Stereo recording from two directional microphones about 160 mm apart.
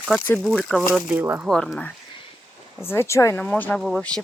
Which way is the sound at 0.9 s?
10° right (ahead or behind).